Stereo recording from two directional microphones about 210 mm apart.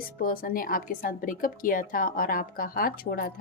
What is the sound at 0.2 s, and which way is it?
Speech, 45° left (ahead or behind).